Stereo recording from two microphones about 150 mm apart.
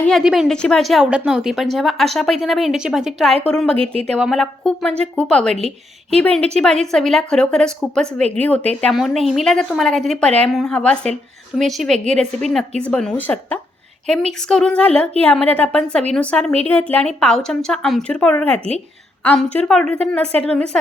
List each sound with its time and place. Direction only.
0.1 s a woman's voice: centre (ahead or behind)
5.5 s a woman's voice: 45° right (ahead or behind)
6.1 s a woman's voice: 10° left (ahead or behind)